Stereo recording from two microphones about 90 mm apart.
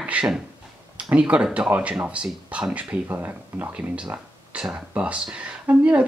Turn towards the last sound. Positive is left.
turn(degrees=-15)  # may be behind; listen again after turning